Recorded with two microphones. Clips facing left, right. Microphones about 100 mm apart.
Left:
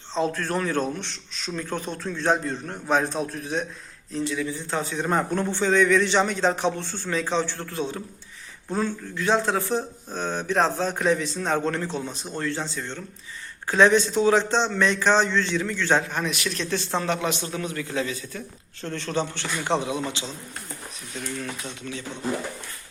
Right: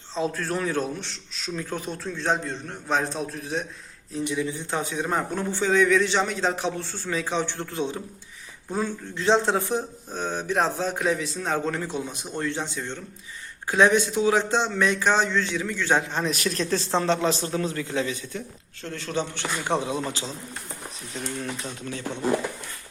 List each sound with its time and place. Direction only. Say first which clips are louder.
0.1 s a man's voice: left 2 dB; 5° right (ahead or behind)
4.2 s speech: even; 20° right (ahead or behind)
5.0 s a man's voice: left 3 dB; 5° right (ahead or behind)
7.4 s a man's voice: right 1 dB; 20° right (ahead or behind)
9.1 s speech: right 2 dB; 25° right (ahead or behind); by 16.0 s 10° right (ahead or behind)
16.0 s a man's voice: right 1 dB; 25° right (ahead or behind)
16.3 s a man's voice: right 2 dB; 40° right (ahead or behind); by 18.4 s 25° right (ahead or behind)
18.8 s speech: left 2 dB; 5° right (ahead or behind)
21.3 s a man's voice: right 1 dB; 25° right (ahead or behind)
21.8 s speech: right 1 dB; 45° right (ahead or behind)